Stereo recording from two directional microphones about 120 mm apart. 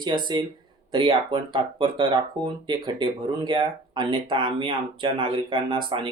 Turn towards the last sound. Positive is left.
turn(degrees=-45)  # may be behind; listen again after turning